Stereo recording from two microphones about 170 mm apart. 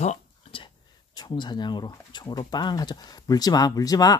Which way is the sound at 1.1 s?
25° left (ahead or behind).